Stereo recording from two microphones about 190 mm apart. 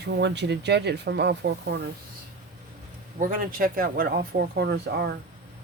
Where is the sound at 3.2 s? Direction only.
45° right (ahead or behind); by 5.2 s 60° right (ahead or behind).